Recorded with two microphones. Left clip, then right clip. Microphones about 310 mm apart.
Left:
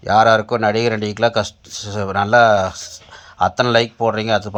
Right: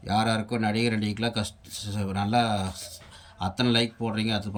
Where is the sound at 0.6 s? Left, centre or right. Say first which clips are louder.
Left 11 dB; centre.